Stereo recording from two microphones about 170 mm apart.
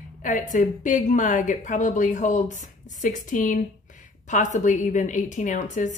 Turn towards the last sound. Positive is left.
turn(degrees=45)  # may be behind; listen again after turning